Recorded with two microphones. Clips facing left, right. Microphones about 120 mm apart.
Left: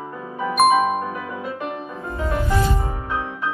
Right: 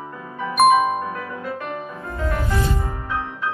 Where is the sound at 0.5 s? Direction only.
Centre (ahead or behind).